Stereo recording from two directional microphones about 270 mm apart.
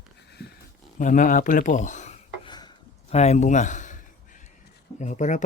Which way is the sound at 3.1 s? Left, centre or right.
Left.